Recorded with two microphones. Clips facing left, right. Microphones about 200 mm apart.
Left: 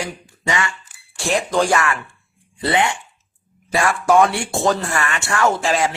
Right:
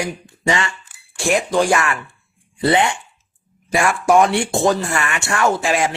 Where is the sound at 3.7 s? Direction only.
20° right (ahead or behind).